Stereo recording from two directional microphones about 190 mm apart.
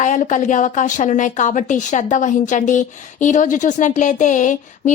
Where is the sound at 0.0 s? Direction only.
40° left (ahead or behind).